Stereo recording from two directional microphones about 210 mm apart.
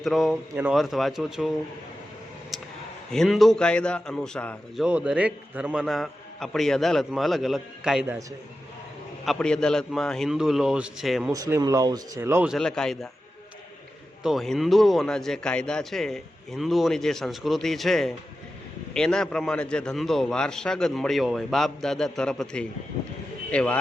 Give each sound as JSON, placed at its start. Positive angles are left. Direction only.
{"t": 0.0, "sound": "speech", "side_deg": 0}
{"t": 2.5, "sound": "a sound", "side_deg": 0}
{"t": 3.1, "sound": "speech", "side_deg": 0}
{"t": 9.2, "sound": "speech", "side_deg": 0}
{"t": 11.3, "sound": "speech", "side_deg": -15}
{"t": 12.5, "sound": "speech", "side_deg": 5}
{"t": 14.2, "sound": "speech", "side_deg": 0}